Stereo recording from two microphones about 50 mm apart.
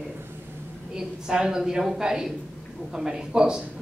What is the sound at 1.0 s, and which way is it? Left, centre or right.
A woman's voice, centre.